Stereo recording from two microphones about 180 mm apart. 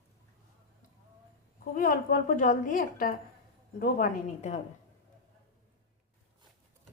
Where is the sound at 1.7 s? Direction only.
50° left (ahead or behind).